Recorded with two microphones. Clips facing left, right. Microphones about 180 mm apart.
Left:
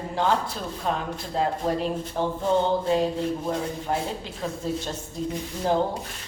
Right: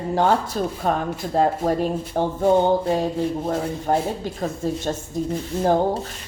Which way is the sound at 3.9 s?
45° right (ahead or behind).